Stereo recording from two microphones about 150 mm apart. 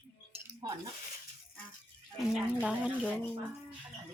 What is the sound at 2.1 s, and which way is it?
Speech, 5° right (ahead or behind).